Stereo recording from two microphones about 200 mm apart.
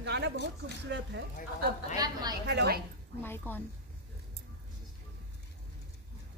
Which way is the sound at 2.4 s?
55° right (ahead or behind).